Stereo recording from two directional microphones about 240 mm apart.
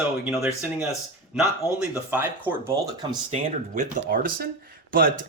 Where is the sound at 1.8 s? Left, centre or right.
Centre.